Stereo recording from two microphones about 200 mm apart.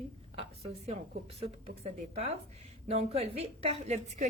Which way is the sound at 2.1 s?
30° right (ahead or behind).